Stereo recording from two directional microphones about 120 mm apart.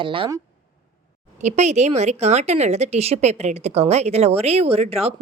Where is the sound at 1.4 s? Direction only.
75° right (ahead or behind).